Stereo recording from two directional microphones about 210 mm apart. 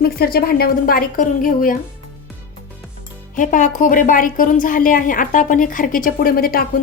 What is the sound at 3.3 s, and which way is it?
A woman's voice, 40° left (ahead or behind).